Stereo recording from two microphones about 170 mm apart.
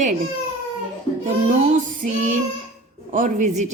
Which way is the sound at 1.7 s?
50° right (ahead or behind).